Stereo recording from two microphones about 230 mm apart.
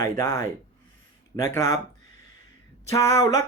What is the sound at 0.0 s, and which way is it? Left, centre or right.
Speech, centre.